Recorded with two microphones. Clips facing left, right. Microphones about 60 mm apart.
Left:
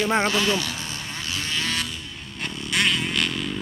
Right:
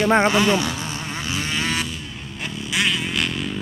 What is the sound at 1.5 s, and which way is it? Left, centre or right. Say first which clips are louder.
Vehicle: right 3 dB; centre.